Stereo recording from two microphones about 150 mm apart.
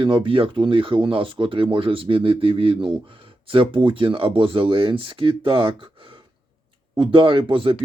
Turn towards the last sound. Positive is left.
turn(degrees=-35)  # may be behind; listen again after turning